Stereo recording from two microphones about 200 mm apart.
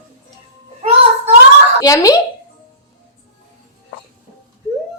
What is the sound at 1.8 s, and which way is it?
Speech, 15° left (ahead or behind).